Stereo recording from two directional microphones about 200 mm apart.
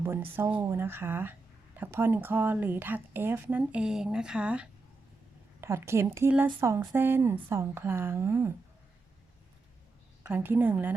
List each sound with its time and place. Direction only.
0.0 s speech: 10° right (ahead or behind)
10.2 s speech: 10° right (ahead or behind)